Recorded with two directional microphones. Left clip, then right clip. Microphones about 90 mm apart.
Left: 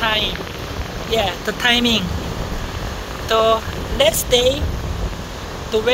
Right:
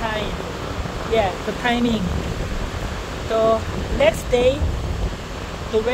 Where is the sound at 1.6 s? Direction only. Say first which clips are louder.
Left 6 dB; 60° left (ahead or behind).